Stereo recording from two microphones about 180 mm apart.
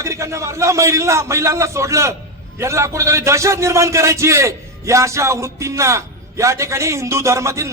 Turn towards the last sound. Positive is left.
turn(degrees=-15)  # may be behind; listen again after turning